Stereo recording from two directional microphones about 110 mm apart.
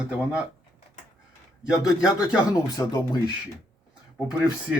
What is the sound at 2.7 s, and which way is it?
Speech, 40° left (ahead or behind).